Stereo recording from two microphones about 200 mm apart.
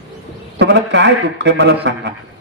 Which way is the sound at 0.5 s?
55° right (ahead or behind).